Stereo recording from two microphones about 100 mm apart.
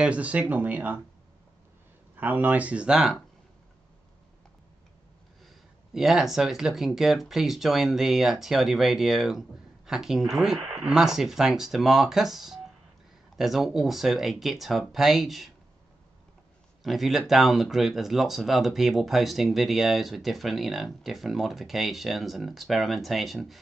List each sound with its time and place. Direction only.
0.0 s speech: 15° right (ahead or behind)
2.1 s speech: 20° right (ahead or behind)
5.9 s speech: 5° right (ahead or behind)
16.8 s speech: centre (ahead or behind)